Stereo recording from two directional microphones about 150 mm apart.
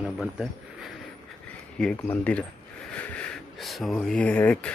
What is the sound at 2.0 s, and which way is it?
Speech, 10° left (ahead or behind).